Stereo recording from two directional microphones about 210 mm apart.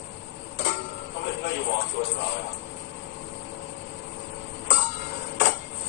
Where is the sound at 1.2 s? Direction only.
55° left (ahead or behind).